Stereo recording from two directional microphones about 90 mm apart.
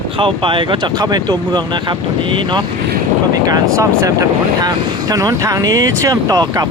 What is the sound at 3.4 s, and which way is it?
Speech, 40° right (ahead or behind).